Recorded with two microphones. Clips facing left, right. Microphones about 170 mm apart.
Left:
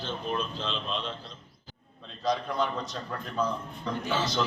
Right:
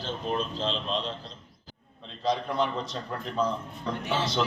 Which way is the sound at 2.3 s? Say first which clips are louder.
Right 1 dB; 25° right (ahead or behind).